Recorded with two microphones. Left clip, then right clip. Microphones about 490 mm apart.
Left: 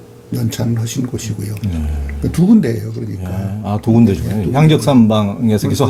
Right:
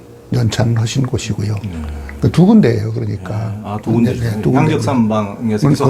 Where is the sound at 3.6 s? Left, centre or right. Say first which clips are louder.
Left 3 dB; left.